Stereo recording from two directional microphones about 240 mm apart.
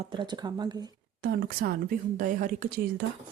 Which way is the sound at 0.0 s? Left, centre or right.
Right.